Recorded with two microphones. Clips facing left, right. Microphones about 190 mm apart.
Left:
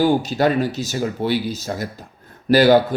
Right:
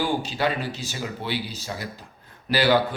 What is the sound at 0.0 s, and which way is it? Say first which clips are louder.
Speech: left 8 dB; 40° left (ahead or behind).